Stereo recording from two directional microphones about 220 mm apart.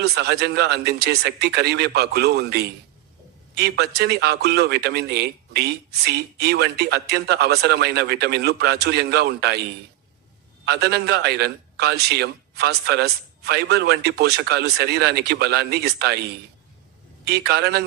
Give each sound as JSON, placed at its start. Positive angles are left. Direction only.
{"t": 0.0, "sound": "a man's voice", "side_deg": -45}
{"t": 10.7, "sound": "a man's voice", "side_deg": -45}
{"t": 17.2, "sound": "a man's voice", "side_deg": -50}